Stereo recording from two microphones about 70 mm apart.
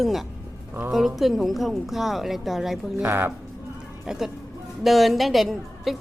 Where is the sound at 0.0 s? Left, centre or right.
Centre.